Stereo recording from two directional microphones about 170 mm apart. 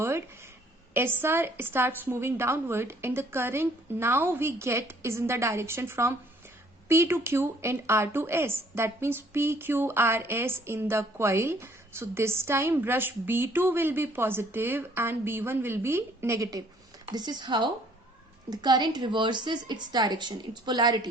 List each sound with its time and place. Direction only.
0.9 s a woman's voice: 15° right (ahead or behind)